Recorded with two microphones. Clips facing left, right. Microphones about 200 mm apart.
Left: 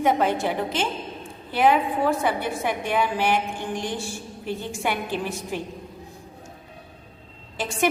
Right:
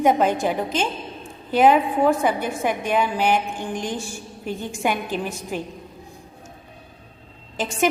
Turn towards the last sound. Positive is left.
turn(degrees=-15)  # may be behind; listen again after turning